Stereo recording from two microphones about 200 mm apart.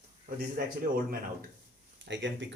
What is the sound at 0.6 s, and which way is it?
Speech, 50° right (ahead or behind).